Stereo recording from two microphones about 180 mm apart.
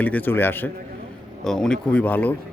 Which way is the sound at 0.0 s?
10° left (ahead or behind).